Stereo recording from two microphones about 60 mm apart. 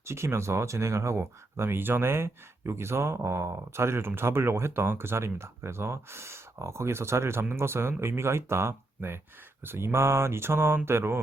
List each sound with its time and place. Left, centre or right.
0.0 s speech: right